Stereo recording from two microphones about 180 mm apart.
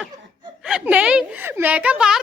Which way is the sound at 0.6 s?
5° right (ahead or behind).